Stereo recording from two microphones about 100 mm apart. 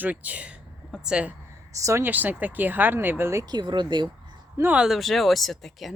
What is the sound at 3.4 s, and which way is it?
Speech, 45° right (ahead or behind).